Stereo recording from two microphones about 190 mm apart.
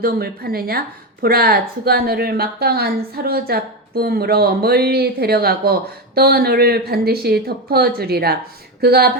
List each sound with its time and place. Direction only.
0.0 s a woman's voice: 50° right (ahead or behind)